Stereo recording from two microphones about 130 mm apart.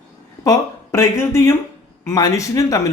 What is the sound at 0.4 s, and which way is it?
Speech, 25° left (ahead or behind).